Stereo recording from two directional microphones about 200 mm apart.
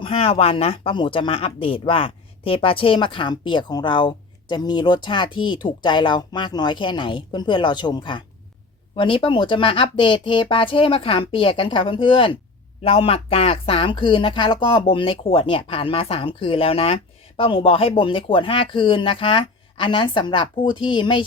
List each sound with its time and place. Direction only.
0.0 s speech: 30° left (ahead or behind)